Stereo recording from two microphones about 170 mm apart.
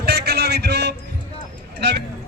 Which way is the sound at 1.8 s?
90° right.